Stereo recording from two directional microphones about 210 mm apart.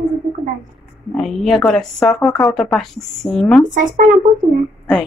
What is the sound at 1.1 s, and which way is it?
Speech, centre (ahead or behind).